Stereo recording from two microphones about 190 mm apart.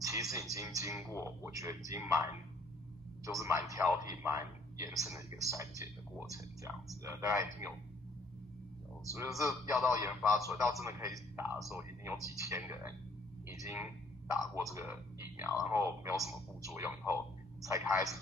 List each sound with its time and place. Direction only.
0.0 s speech: 15° right (ahead or behind)
3.3 s speech: 15° right (ahead or behind)
9.4 s speech: 15° right (ahead or behind)
13.5 s a sound: 15° right (ahead or behind)
14.6 s speech: 15° right (ahead or behind)